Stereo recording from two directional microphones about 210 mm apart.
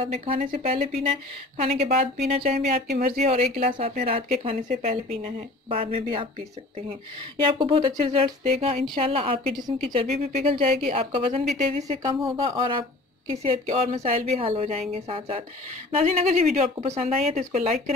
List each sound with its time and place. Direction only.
0.0 s speech: 30° right (ahead or behind)
3.1 s a woman's voice: 45° right (ahead or behind)
3.3 s a woman's voice: 30° right (ahead or behind)
7.4 s a woman's voice: 25° right (ahead or behind)